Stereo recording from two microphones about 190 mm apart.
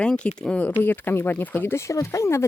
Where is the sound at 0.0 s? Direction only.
5° left (ahead or behind).